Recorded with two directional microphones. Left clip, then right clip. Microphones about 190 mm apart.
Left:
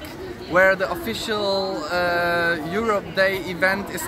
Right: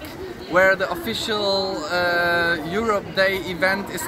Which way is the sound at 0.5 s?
15° left (ahead or behind).